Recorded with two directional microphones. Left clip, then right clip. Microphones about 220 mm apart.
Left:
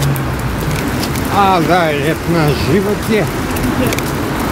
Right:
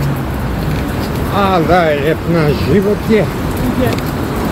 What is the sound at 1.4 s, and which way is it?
Speech, 15° left (ahead or behind).